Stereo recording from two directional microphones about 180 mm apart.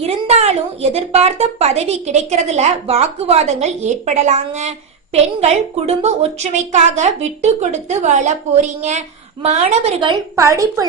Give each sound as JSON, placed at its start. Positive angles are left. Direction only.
{"t": 0.0, "sound": "a woman's voice", "side_deg": -35}